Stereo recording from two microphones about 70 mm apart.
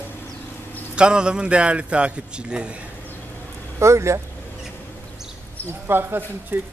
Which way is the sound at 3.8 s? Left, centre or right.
Right.